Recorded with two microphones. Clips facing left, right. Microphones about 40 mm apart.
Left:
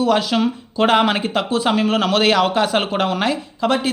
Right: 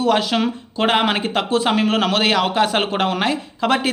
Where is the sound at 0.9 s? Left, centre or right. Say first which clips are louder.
Left 2 dB; right.